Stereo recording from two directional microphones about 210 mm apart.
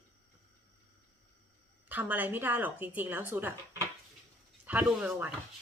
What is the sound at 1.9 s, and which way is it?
A woman's voice, 10° right (ahead or behind).